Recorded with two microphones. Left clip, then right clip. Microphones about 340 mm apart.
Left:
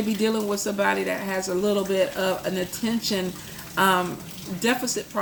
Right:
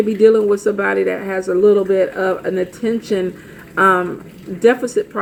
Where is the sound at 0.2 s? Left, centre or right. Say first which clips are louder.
Right 15 dB; centre.